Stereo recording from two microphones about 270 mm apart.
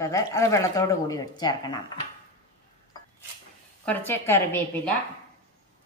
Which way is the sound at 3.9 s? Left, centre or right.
Centre.